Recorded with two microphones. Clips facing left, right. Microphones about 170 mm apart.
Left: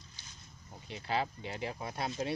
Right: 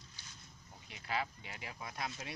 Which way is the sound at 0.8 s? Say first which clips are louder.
Left 5 dB; 30° left (ahead or behind).